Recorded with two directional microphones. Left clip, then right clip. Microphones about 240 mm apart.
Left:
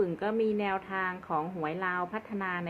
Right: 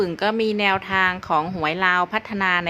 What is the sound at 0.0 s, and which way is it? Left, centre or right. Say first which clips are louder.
A woman's voice: right 8 dB; right.